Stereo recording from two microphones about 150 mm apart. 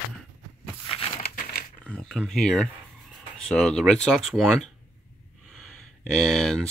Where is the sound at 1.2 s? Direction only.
85° left.